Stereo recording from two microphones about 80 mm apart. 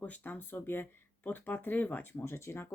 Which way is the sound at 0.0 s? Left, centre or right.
Centre.